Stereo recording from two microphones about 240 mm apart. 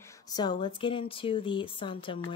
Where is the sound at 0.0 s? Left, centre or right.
Centre.